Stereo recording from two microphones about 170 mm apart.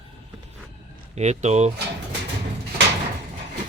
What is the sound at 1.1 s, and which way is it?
Speech, 40° right (ahead or behind).